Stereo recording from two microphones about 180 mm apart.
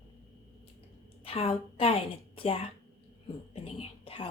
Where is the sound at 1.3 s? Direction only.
30° left (ahead or behind).